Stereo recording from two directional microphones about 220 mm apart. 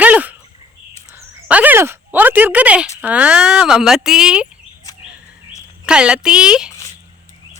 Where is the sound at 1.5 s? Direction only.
5° right (ahead or behind).